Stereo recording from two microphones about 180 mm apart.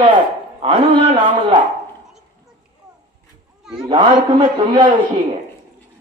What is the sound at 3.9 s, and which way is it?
A man's voice, 25° right (ahead or behind).